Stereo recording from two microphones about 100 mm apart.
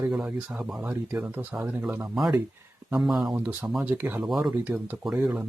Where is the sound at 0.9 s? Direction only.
20° right (ahead or behind).